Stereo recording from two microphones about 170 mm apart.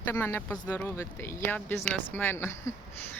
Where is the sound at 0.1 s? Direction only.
15° left (ahead or behind).